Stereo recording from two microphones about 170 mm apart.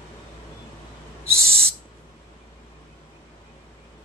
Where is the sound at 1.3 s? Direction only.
65° right (ahead or behind).